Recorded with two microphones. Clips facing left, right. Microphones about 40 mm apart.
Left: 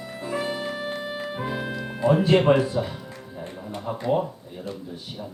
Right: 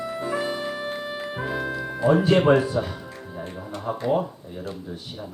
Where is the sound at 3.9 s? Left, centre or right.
Centre.